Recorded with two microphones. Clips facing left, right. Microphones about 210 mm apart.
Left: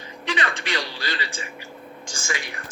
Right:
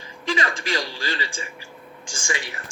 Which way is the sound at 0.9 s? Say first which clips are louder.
Right 1 dB; 30° right (ahead or behind).